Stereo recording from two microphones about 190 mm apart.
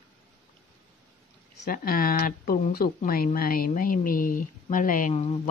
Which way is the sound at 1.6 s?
50° left (ahead or behind).